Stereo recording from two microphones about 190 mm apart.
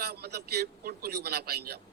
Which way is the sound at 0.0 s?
60° right (ahead or behind).